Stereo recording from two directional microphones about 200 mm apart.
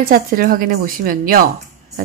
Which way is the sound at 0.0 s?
45° right (ahead or behind).